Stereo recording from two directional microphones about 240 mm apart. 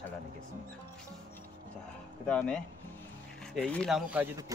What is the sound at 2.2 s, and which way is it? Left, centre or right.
Speech, centre.